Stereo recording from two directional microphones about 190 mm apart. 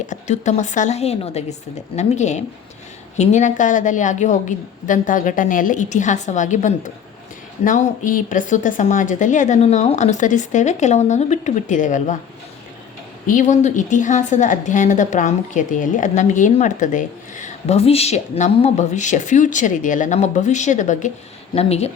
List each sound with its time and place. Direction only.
0.0 s a woman's voice: 40° left (ahead or behind)
13.2 s a woman's voice: 40° left (ahead or behind)